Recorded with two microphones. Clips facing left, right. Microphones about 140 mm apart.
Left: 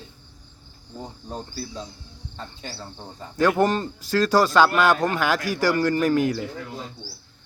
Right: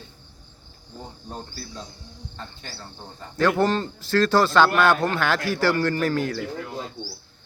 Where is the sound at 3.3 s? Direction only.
15° left (ahead or behind).